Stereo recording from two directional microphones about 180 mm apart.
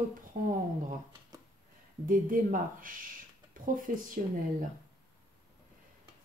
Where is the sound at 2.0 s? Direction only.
50° right (ahead or behind).